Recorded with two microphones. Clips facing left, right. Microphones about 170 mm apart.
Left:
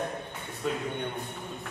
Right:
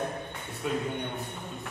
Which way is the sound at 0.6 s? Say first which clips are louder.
Right 1 dB; 5° right (ahead or behind).